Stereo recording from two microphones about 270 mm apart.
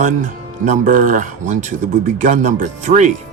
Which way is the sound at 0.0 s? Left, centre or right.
Right.